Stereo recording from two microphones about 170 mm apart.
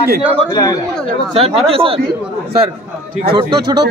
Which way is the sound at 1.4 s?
35° right (ahead or behind).